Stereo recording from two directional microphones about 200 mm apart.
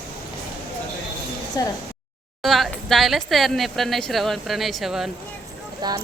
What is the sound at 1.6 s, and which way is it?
Speech, 20° left (ahead or behind).